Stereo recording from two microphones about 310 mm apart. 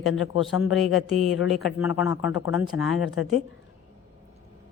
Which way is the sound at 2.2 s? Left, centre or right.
Left.